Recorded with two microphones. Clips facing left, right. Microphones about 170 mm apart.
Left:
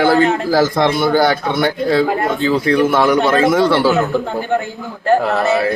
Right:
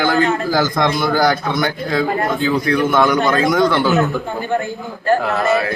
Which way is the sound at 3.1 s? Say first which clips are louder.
Left 3 dB; 5° left (ahead or behind).